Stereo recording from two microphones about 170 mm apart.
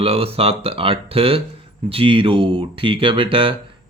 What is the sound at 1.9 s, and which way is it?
Speech, 30° right (ahead or behind).